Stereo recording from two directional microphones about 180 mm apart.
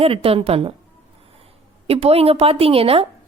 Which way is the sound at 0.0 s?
30° right (ahead or behind).